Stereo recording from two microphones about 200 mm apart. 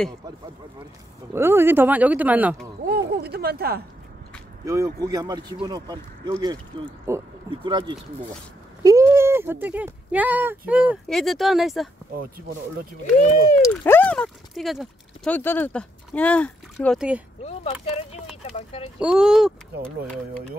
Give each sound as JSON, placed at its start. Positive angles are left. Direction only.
{"t": 1.3, "sound": "speech", "side_deg": -10}
{"t": 2.9, "sound": "a sound", "side_deg": -55}
{"t": 4.6, "sound": "speech", "side_deg": -15}
{"t": 7.5, "sound": "speech", "side_deg": -25}
{"t": 13.6, "sound": "speech", "side_deg": 10}
{"t": 17.4, "sound": "speech", "side_deg": 35}
{"t": 18.3, "sound": "a sound", "side_deg": 30}
{"t": 18.9, "sound": "speech", "side_deg": -5}